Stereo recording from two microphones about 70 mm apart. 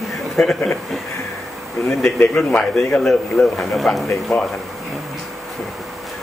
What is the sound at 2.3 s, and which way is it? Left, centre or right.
Speech, centre.